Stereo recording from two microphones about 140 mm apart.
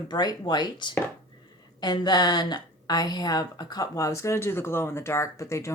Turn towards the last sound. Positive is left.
turn(degrees=20)  # may be behind; listen again after turning